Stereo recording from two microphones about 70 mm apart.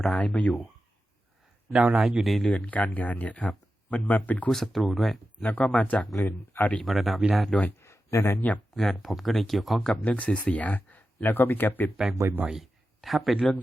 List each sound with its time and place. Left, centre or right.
0.0 s speech: centre
1.7 s speech: centre
2.5 s speech: centre
4.4 s speech: centre
5.4 s speech: left
6.0 s speech: centre
7.8 s a sound: left
8.7 s speech: centre
10.0 s speech: centre
12.5 s speech: centre